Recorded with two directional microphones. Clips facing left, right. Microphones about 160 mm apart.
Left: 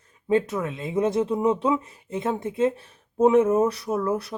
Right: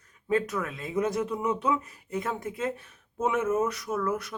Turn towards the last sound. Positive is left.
turn(degrees=30)  # may be behind; listen again after turning